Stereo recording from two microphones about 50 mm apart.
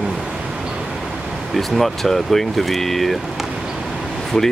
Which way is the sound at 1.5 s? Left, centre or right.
Centre.